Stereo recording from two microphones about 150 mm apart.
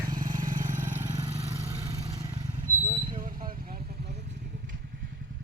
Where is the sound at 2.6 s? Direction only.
60° right (ahead or behind); by 4.2 s 90° right.